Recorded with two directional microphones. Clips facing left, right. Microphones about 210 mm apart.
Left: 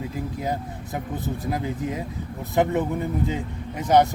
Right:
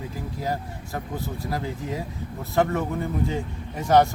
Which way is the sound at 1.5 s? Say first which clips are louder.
Left 3 dB; 20° left (ahead or behind).